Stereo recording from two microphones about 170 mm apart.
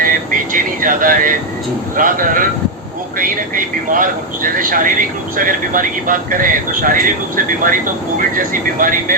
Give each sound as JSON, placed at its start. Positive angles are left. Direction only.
{"t": 0.0, "sound": "vehicle", "side_deg": -55}
{"t": 2.0, "sound": "a man's voice", "side_deg": -55}